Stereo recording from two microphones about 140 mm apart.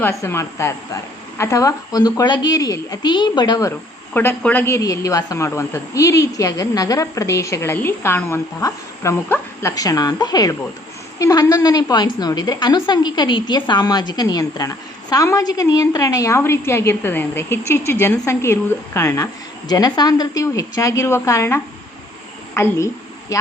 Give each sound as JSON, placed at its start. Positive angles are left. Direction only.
{"t": 0.0, "sound": "a woman's voice", "side_deg": 20}